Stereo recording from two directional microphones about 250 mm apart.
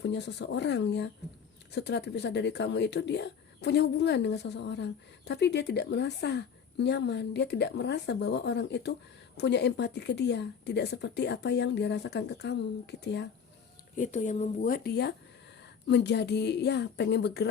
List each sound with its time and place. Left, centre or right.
0.0 s speech: left
13.9 s speech: left